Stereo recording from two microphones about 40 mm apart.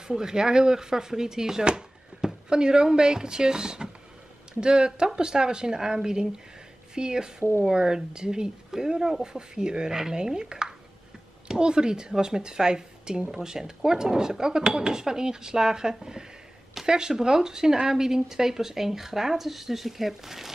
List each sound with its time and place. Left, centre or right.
0.1 s speech: centre